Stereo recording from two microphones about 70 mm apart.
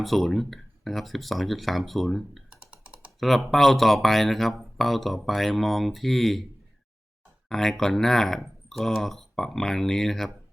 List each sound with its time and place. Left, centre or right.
0.0 s speech: centre
2.5 s computer keyboard: centre
3.2 s speech: centre
7.5 s speech: centre